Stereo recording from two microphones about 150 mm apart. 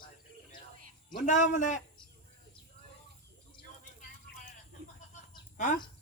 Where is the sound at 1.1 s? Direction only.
55° left (ahead or behind).